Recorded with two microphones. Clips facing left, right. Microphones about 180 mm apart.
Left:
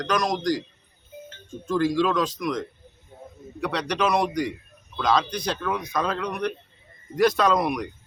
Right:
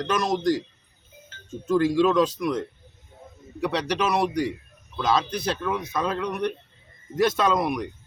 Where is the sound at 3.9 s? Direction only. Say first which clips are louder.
Left 2 dB; 5° right (ahead or behind).